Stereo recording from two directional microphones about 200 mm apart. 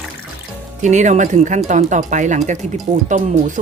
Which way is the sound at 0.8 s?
35° right (ahead or behind).